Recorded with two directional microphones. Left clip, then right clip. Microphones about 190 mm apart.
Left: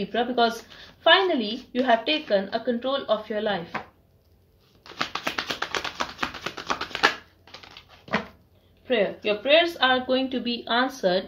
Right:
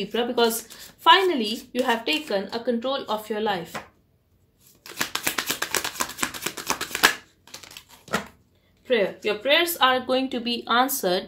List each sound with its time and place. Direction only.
0.1 s speech: 40° right (ahead or behind)
4.9 s a sound: 30° right (ahead or behind)
8.8 s speech: 40° right (ahead or behind)